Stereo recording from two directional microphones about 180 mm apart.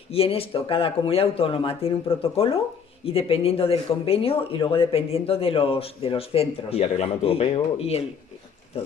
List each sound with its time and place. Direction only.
0.1 s speech: 30° left (ahead or behind)